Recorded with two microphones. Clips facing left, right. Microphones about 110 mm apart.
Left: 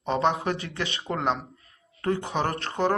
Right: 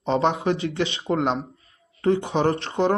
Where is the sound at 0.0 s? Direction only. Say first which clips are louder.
Right 3 dB; 30° right (ahead or behind).